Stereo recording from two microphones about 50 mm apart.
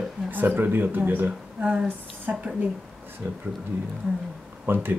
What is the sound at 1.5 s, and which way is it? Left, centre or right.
A woman's voice, right.